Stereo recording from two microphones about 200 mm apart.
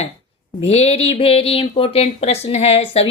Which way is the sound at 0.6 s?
30° left (ahead or behind).